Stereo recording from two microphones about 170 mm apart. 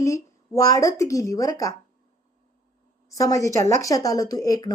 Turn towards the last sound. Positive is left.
turn(degrees=20)  # may be behind; listen again after turning